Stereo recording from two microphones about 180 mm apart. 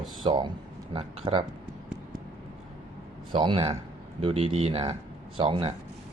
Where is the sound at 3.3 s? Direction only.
30° right (ahead or behind).